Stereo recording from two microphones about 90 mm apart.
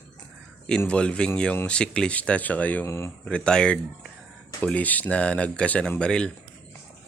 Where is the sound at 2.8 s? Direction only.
30° left (ahead or behind).